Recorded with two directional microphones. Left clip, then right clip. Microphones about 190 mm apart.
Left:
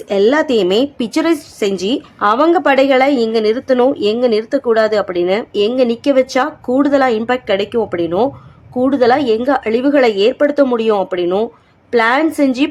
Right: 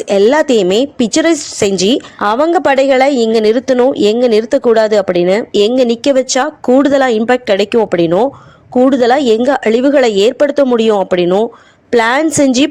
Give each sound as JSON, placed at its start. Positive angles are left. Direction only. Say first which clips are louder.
{"t": 0.1, "sound": "a woman's voice", "louder": "right 3 dB", "side_deg": -40}